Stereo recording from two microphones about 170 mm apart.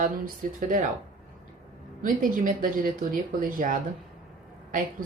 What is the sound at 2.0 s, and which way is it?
Speech, 55° right (ahead or behind).